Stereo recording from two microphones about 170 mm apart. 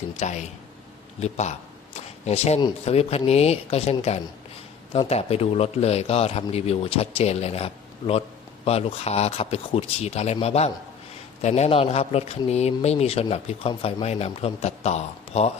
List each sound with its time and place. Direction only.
0.2 s a man's voice: 45° left (ahead or behind)